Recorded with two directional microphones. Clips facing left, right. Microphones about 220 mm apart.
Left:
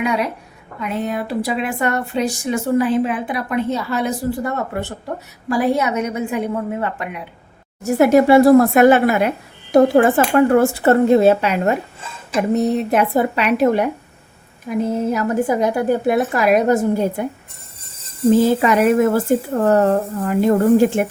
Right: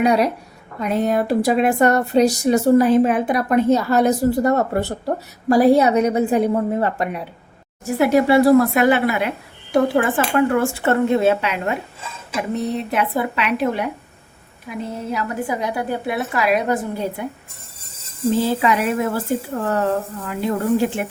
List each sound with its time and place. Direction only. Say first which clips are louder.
0.0 s speech: right 4 dB; 40° right (ahead or behind)
7.9 s a woman's voice: left 4 dB; 45° left (ahead or behind)
18.4 s a woman's voice: left 5 dB; 50° left (ahead or behind)